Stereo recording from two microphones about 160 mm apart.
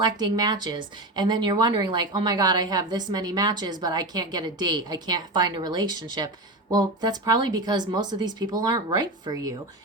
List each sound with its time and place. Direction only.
0.0 s a woman's voice: 25° right (ahead or behind)